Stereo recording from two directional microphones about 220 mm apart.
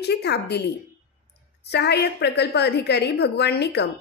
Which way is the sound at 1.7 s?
50° left (ahead or behind).